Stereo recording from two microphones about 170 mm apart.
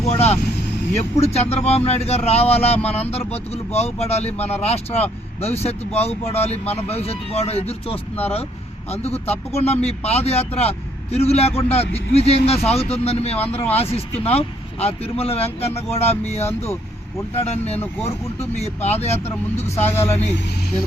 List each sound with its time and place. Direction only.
0.0 s a man's voice: 40° left (ahead or behind)
19.8 s speech: 15° left (ahead or behind)